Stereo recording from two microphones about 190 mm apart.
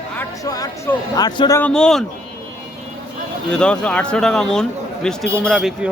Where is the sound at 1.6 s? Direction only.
5° left (ahead or behind).